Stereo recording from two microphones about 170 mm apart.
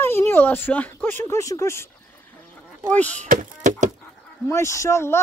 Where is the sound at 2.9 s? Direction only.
10° left (ahead or behind).